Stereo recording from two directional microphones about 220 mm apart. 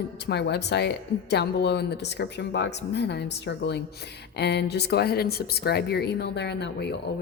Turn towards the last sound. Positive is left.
turn(degrees=50)  # may be behind; listen again after turning